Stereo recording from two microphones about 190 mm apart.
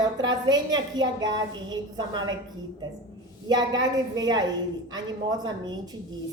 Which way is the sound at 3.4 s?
20° right (ahead or behind).